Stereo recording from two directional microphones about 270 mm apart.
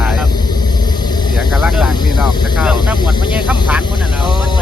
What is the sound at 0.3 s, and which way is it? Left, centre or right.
Vehicle, centre.